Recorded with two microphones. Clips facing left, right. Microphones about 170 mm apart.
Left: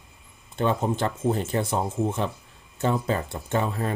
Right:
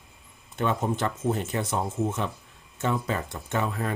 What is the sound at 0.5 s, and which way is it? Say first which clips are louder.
Speech: left 2 dB; 30° left (ahead or behind).